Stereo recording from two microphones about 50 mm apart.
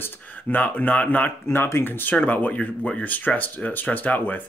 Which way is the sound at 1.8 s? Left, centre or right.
Left.